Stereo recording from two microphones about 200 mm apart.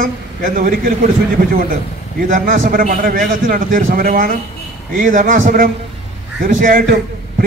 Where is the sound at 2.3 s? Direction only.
45° right (ahead or behind).